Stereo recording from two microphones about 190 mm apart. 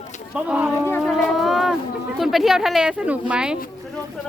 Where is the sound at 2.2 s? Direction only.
Centre (ahead or behind).